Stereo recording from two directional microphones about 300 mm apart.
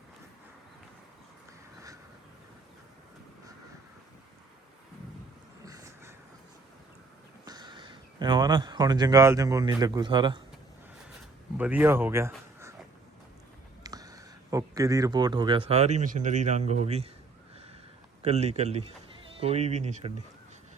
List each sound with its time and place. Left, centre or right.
5.6 s a sound: centre
7.4 s speech: centre
11.5 s speech: centre
13.8 s speech: centre
18.2 s speech: right